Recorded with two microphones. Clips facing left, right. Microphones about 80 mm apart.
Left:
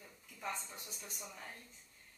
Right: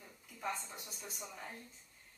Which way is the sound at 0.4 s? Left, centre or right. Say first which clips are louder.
Right 2 dB; centre.